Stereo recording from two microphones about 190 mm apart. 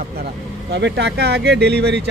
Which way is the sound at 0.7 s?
65° right (ahead or behind).